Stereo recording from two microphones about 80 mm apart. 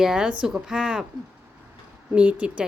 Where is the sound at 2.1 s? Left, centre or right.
Centre.